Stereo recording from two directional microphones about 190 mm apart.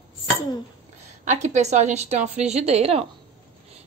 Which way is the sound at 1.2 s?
40° right (ahead or behind).